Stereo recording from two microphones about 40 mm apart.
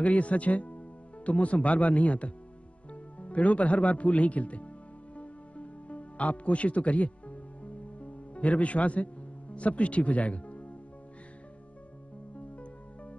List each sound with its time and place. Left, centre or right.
0.0 s a man's voice: left
5.1 s music: left
12.4 s music: left